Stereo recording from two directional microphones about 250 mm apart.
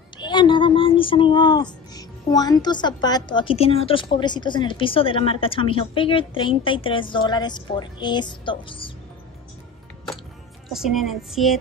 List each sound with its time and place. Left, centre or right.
0.2 s speech: centre
10.7 s music: centre